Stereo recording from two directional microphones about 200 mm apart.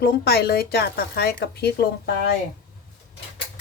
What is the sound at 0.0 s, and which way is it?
Speech, 50° left (ahead or behind).